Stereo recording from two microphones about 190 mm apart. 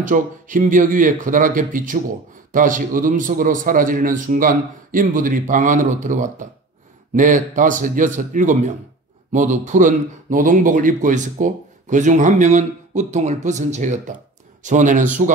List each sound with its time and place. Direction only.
0.0 s a man's voice: 45° right (ahead or behind)